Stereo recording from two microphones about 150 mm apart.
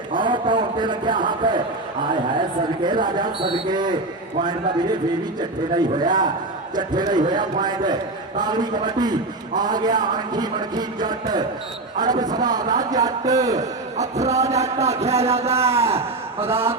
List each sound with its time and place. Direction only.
0.2 s a man's voice: 30° right (ahead or behind)
2.8 s a man's voice: 30° right (ahead or behind)
6.0 s a man's voice: 30° right (ahead or behind)
13.6 s a man's voice: 50° right (ahead or behind)
14.5 s a sound: 45° right (ahead or behind)
15.5 s a man's voice: 15° right (ahead or behind)